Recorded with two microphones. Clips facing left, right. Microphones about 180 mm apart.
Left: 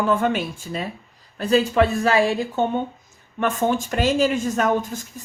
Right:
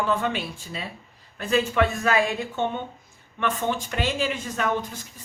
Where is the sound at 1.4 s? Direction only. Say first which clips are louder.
Left 4 dB; 35° left (ahead or behind).